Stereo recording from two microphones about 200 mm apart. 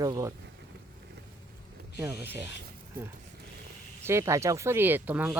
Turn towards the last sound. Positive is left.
turn(degrees=-10)  # may be behind; listen again after turning